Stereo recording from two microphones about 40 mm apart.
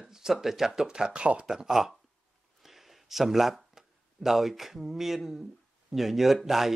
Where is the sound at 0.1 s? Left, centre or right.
Centre.